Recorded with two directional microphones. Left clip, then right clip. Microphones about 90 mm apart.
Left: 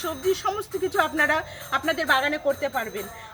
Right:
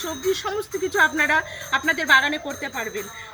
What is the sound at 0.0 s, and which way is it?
A woman's voice, 40° left (ahead or behind).